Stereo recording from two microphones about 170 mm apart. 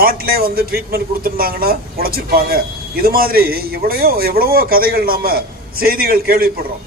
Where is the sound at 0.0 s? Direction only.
60° right (ahead or behind).